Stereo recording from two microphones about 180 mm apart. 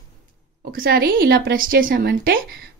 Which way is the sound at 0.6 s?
55° right (ahead or behind).